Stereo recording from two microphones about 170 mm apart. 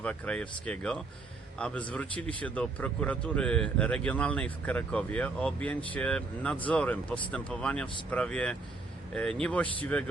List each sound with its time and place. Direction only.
0.0 s speech: 5° left (ahead or behind)